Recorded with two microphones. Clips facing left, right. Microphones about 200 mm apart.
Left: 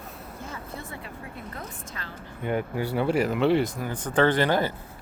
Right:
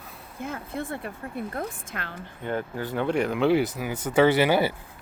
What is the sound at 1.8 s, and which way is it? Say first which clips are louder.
Speech: right 3 dB; 60° right (ahead or behind).